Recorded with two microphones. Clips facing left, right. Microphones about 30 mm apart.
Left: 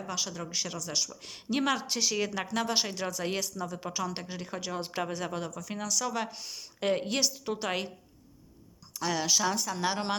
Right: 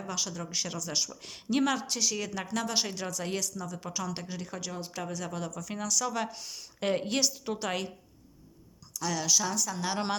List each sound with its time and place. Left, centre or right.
0.0 s speech: centre
4.9 s speech: left
5.4 s speech: centre
8.9 s speech: left